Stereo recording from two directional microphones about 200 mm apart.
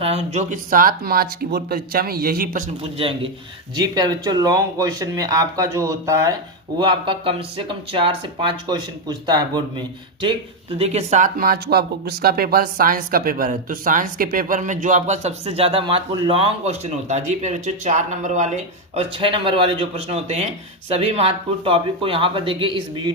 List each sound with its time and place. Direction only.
0.0 s speech: 30° right (ahead or behind); by 2.6 s 45° right (ahead or behind)
2.8 s speech: 30° right (ahead or behind)